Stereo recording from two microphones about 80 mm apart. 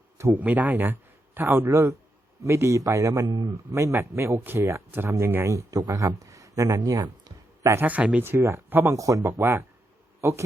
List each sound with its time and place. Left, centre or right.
0.3 s speech: right
3.2 s speech: right
3.7 s speech: right
7.6 s speech: right
7.9 s speech: centre
8.2 s a man's voice: right